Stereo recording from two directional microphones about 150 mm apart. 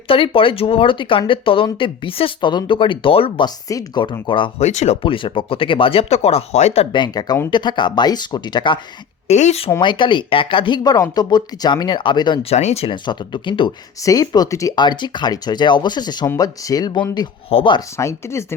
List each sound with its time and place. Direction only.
0.1 s speech: 35° left (ahead or behind)
4.6 s speech: 50° left (ahead or behind)
5.0 s speech: 35° left (ahead or behind)
6.9 s speech: 30° left (ahead or behind)
9.2 s speech: 50° left (ahead or behind)
9.8 s speech: 30° left (ahead or behind)
17.9 s speech: 20° left (ahead or behind)